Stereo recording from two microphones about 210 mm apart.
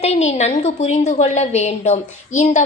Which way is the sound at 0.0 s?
30° left (ahead or behind).